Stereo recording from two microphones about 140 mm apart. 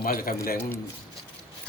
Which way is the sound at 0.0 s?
90° left.